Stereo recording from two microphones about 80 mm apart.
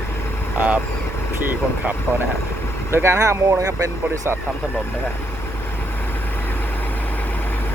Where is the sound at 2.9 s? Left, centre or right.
Right.